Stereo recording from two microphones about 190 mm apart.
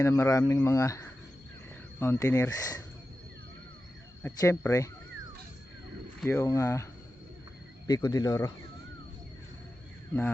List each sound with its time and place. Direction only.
0.0 s speech: 15° left (ahead or behind)
4.2 s speech: 15° left (ahead or behind)
6.2 s speech: 15° left (ahead or behind)
7.9 s speech: 20° left (ahead or behind)